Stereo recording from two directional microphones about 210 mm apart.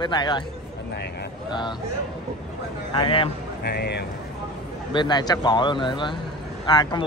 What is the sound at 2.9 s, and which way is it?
Speech, 25° left (ahead or behind).